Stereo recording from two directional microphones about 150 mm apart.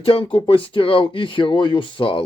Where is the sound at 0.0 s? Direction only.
35° left (ahead or behind).